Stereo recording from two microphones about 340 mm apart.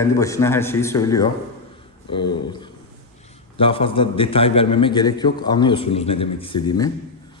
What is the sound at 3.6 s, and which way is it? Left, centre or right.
A man's voice, centre.